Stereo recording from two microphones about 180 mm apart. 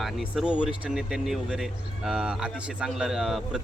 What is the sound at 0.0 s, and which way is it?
Speech, 5° right (ahead or behind).